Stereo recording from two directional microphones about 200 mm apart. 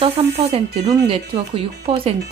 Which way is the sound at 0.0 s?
30° right (ahead or behind).